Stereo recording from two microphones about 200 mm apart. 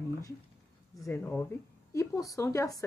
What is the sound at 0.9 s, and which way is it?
A woman's voice, 15° left (ahead or behind).